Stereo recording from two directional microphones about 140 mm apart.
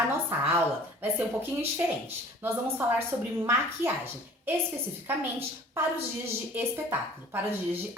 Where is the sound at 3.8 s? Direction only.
15° right (ahead or behind).